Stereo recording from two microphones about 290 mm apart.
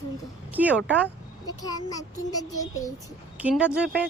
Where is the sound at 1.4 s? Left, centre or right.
Centre.